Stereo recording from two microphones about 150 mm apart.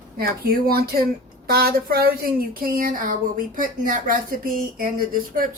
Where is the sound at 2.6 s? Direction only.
70° right (ahead or behind).